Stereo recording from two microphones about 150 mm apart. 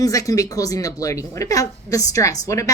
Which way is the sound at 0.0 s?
20° left (ahead or behind).